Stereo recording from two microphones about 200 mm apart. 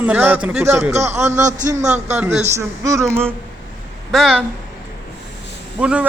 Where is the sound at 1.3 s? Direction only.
40° right (ahead or behind).